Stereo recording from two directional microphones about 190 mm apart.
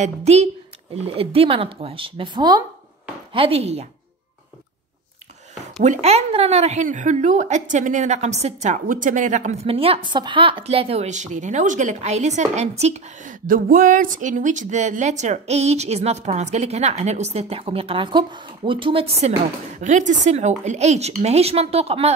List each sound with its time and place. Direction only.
0.0 s speech: 35° right (ahead or behind)
5.9 s speech: 35° right (ahead or behind)
13.5 s speech: 45° right (ahead or behind); by 22.1 s 30° right (ahead or behind)